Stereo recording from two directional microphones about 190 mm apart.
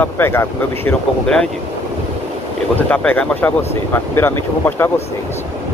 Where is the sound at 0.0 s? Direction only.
10° left (ahead or behind).